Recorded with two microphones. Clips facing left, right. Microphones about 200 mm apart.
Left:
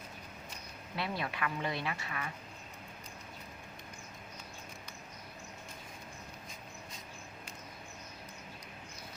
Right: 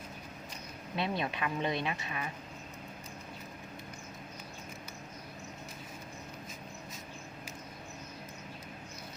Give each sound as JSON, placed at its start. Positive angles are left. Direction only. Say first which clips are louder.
{"t": 0.9, "sound": "speech", "louder": "right 3 dB", "side_deg": -20}